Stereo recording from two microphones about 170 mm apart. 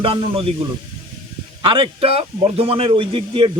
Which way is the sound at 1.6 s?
30° right (ahead or behind).